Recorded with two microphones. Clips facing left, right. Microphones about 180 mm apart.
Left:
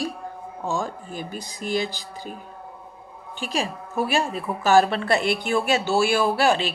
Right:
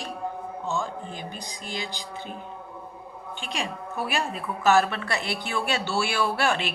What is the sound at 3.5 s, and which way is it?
A woman's voice, 35° left (ahead or behind).